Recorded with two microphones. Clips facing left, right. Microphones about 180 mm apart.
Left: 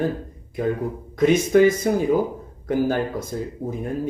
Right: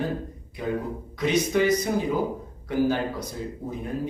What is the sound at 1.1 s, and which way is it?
Speech, 50° left (ahead or behind).